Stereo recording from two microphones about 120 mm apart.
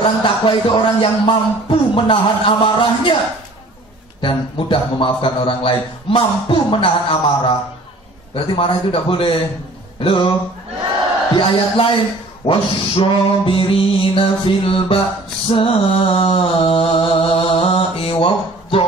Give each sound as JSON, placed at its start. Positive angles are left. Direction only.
{"t": 0.2, "sound": "speech", "side_deg": 45}
{"t": 4.2, "sound": "speech", "side_deg": 45}
{"t": 8.5, "sound": "speech", "side_deg": 50}
{"t": 9.9, "sound": "music", "side_deg": 50}
{"t": 11.3, "sound": "speech", "side_deg": 45}
{"t": 15.4, "sound": "mantra", "side_deg": 50}